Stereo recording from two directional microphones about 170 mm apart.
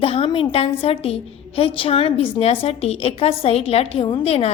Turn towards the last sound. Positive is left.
turn(degrees=35)  # may be behind; listen again after turning